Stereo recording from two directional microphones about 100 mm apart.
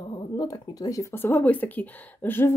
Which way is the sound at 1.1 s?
20° left (ahead or behind).